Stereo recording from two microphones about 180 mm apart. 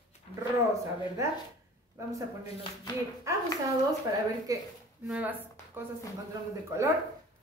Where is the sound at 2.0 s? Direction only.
15° right (ahead or behind).